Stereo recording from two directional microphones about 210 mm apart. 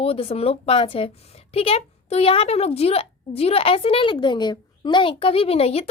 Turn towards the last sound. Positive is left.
turn(degrees=30)  # may be behind; listen again after turning